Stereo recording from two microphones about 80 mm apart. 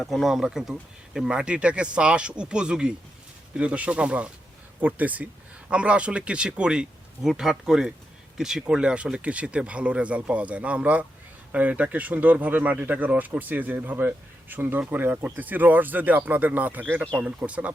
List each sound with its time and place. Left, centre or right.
0.0 s speech: centre